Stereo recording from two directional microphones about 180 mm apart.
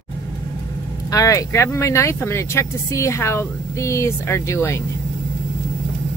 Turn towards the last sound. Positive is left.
turn(degrees=15)  # may be behind; listen again after turning